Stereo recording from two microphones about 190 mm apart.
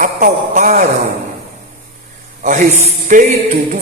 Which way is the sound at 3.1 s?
45° right (ahead or behind).